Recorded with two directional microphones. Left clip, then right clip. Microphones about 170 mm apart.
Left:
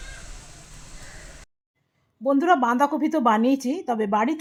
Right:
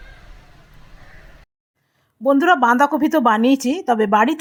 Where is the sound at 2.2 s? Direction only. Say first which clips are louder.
Right 6 dB; 25° right (ahead or behind).